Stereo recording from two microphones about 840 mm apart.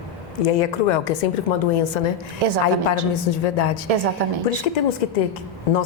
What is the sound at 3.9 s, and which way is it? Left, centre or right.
Speech, right.